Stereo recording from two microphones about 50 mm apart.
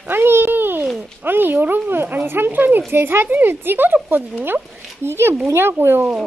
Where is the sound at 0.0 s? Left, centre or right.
Right.